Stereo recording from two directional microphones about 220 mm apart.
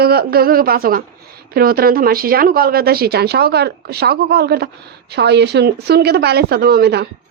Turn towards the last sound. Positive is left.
turn(degrees=-45)  # may be behind; listen again after turning